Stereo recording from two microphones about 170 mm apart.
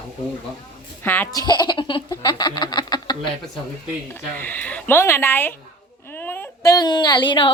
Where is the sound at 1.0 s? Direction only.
10° left (ahead or behind).